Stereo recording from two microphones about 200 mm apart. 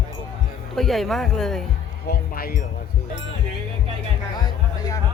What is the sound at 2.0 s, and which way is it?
Speech, 50° left (ahead or behind).